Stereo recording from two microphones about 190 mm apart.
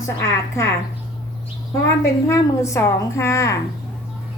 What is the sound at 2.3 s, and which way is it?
A woman's voice, 15° left (ahead or behind).